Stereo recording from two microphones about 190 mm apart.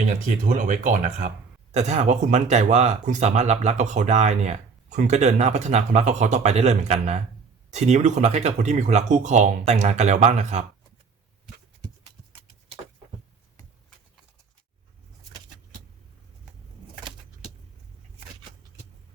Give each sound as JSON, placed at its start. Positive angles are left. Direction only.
{"t": 0.4, "sound": "speech", "side_deg": -40}
{"t": 12.3, "sound": "clip-clop", "side_deg": -30}